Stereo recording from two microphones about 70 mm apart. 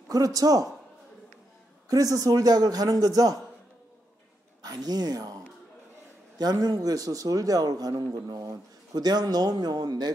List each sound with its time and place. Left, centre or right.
0.1 s a man's voice: right
1.9 s a man's voice: right
4.6 s speech: right
6.3 s a man's voice: right